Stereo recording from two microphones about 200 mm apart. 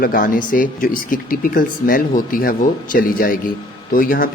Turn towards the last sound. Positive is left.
turn(degrees=45)  # may be behind; listen again after turning